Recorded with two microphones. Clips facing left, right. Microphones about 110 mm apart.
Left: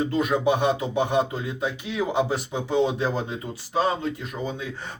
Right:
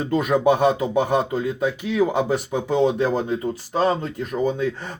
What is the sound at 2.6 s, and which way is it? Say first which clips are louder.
Speech: right 3 dB; 45° right (ahead or behind).